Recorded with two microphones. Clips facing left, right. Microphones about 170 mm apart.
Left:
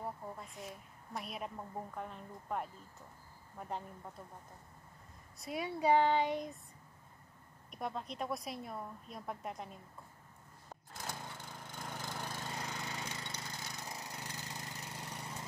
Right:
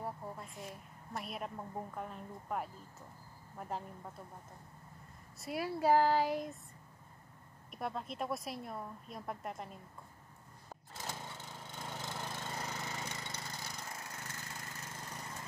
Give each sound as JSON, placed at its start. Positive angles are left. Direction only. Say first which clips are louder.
{"t": 0.0, "sound": "a sound", "louder": "right 1 dB", "side_deg": 0}
{"t": 2.0, "sound": "a woman's voice", "louder": "right 1 dB", "side_deg": 0}
{"t": 5.4, "sound": "a woman's voice", "louder": "right 1 dB", "side_deg": 0}
{"t": 7.7, "sound": "a woman's voice", "louder": "right 1 dB", "side_deg": 0}
{"t": 10.7, "sound": "lawn mower", "louder": "even", "side_deg": 0}
{"t": 13.7, "sound": "lawn mower", "louder": "left 1 dB", "side_deg": 15}